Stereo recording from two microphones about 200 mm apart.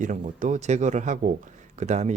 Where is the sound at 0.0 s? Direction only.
40° right (ahead or behind).